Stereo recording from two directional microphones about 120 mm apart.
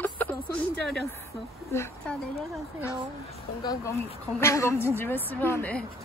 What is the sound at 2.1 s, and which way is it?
Speech, 10° left (ahead or behind).